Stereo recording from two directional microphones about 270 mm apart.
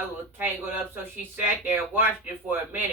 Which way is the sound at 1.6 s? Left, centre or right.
Centre.